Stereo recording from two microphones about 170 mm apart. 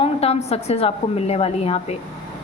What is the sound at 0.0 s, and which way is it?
A woman's voice, 35° left (ahead or behind).